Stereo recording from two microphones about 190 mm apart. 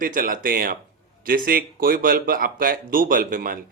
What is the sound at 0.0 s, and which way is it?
Speech, 45° right (ahead or behind).